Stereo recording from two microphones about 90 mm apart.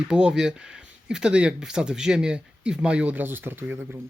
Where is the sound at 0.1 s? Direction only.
5° right (ahead or behind).